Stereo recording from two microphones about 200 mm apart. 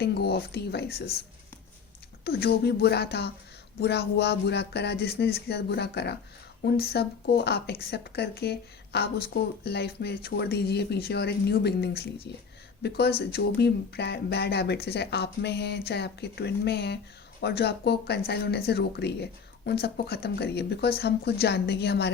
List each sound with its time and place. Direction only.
0.0 s speech: 55° left (ahead or behind)
2.2 s speech: 50° left (ahead or behind)